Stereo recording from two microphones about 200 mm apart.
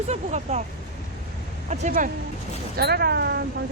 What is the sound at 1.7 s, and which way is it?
Speech, 40° right (ahead or behind).